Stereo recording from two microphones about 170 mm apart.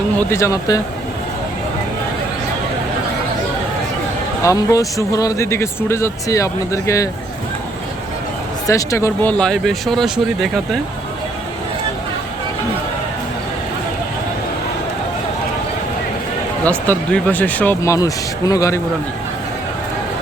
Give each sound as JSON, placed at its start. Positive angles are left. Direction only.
{"t": 0.3, "sound": "speech", "side_deg": 15}
{"t": 4.4, "sound": "speech", "side_deg": 20}
{"t": 8.6, "sound": "speech", "side_deg": 20}
{"t": 9.4, "sound": "speech", "side_deg": 0}
{"t": 16.6, "sound": "speech", "side_deg": 10}